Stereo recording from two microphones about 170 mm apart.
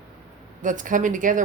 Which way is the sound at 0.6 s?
50° right (ahead or behind).